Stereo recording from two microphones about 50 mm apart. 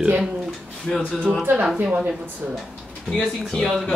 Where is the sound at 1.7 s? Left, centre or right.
Right.